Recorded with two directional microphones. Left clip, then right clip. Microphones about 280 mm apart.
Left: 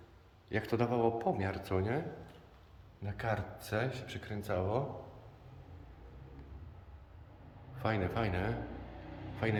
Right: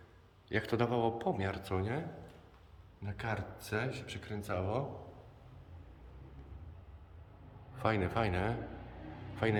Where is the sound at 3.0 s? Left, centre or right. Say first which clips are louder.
Left 3 dB; centre.